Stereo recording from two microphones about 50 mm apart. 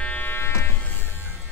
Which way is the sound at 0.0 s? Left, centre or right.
Left.